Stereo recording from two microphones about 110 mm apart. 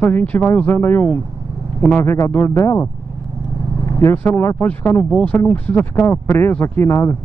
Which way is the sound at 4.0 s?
20° left (ahead or behind).